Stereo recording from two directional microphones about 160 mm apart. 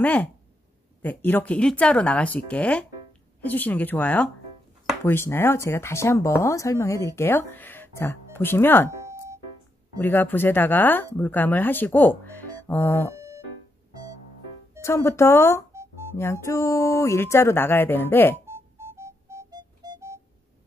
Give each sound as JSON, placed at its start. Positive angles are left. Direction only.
{"t": 0.0, "sound": "speech", "side_deg": 10}
{"t": 8.9, "sound": "music", "side_deg": -20}
{"t": 9.9, "sound": "speech", "side_deg": 10}
{"t": 13.1, "sound": "music", "side_deg": -20}
{"t": 14.8, "sound": "speech", "side_deg": 15}
{"t": 18.5, "sound": "music", "side_deg": -15}